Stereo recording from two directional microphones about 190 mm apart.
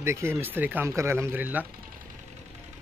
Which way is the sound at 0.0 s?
15° right (ahead or behind).